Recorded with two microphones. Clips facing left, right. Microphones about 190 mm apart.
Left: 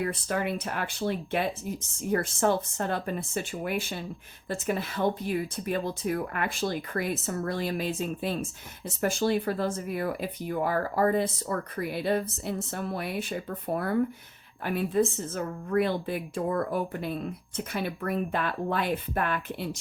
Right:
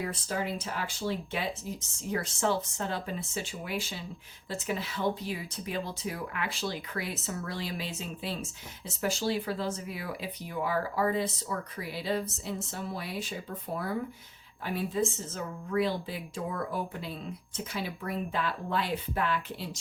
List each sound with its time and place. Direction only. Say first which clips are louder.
0.0 s speech: left 4 dB; 60° left (ahead or behind)